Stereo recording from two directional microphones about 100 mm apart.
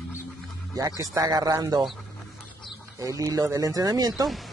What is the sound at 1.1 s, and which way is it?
Speech, 35° right (ahead or behind).